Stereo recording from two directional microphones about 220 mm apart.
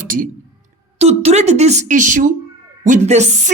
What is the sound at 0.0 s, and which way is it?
A woman's voice, 40° right (ahead or behind).